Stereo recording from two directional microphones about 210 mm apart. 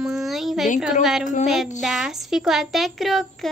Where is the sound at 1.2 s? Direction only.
35° left (ahead or behind).